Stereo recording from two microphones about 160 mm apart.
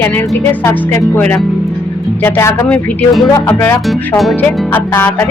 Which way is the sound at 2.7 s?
10° left (ahead or behind).